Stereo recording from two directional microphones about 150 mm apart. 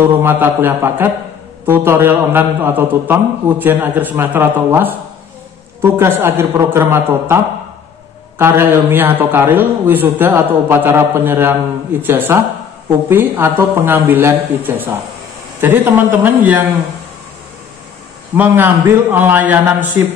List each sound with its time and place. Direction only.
0.2 s a man's voice: 15° right (ahead or behind)
8.4 s a man's voice: 15° right (ahead or behind)
18.3 s a man's voice: 15° right (ahead or behind)